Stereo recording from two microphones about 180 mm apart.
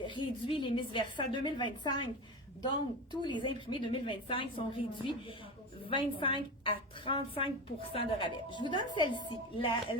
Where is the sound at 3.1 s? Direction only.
25° left (ahead or behind).